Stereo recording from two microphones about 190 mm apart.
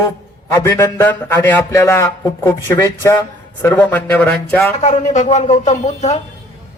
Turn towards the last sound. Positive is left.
turn(degrees=35)  # may be behind; listen again after turning